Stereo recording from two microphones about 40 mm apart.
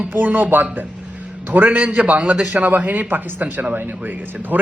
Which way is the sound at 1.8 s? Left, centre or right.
Right.